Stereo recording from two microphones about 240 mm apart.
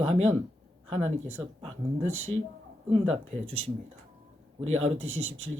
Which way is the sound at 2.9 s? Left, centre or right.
Right.